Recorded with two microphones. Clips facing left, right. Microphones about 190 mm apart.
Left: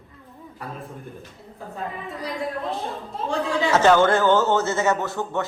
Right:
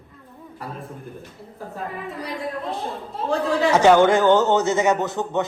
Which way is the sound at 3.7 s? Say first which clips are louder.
Right 2 dB; 15° right (ahead or behind).